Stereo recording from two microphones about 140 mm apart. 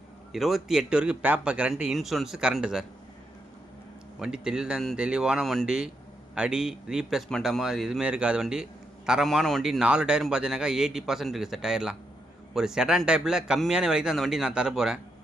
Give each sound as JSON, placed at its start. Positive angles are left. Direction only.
{"t": 0.3, "sound": "a man's voice", "side_deg": 0}
{"t": 4.2, "sound": "a man's voice", "side_deg": -5}